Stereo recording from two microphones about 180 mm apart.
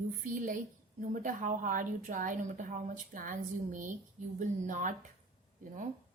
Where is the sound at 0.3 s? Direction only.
50° right (ahead or behind).